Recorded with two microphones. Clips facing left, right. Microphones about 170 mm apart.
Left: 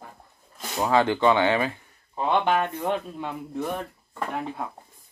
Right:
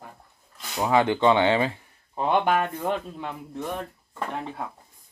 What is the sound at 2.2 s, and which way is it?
Speech, 10° right (ahead or behind).